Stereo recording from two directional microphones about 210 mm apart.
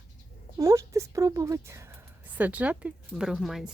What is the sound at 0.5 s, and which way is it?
Speech, 15° right (ahead or behind).